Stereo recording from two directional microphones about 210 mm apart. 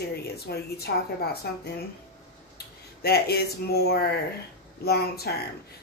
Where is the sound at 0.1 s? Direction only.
50° left (ahead or behind).